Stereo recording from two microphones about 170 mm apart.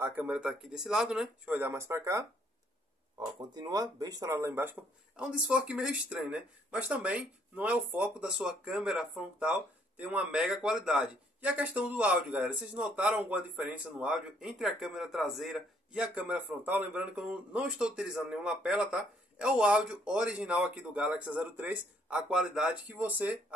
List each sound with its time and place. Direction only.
0.0 s speech: 10° right (ahead or behind)